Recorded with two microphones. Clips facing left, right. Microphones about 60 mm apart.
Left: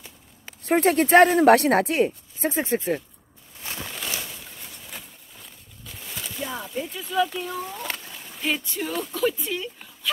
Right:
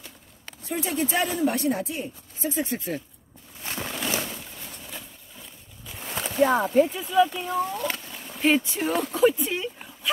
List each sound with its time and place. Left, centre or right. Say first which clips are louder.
0.7 s speech: left 9 dB; left
2.6 s speech: left 6 dB; left
3.6 s a sound: right 3 dB; right
6.2 s speech: right 12 dB; right
6.9 s speech: right 3 dB; centre
7.5 s speech: right 6 dB; right
7.8 s a sound: right 3 dB; centre
8.3 s speech: right 6 dB; right